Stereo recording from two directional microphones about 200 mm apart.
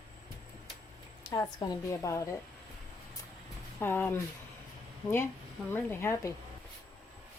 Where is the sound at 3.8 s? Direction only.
10° left (ahead or behind).